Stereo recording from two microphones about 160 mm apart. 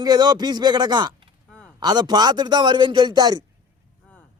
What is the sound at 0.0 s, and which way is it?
A man's voice, 25° right (ahead or behind).